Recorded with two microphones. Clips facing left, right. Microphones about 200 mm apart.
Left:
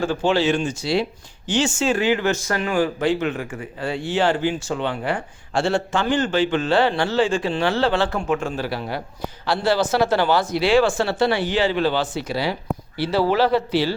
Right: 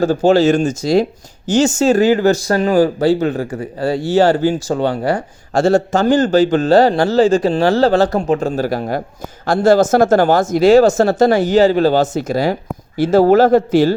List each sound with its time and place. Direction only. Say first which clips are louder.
0.0 s speech: right 8 dB; 40° right (ahead or behind)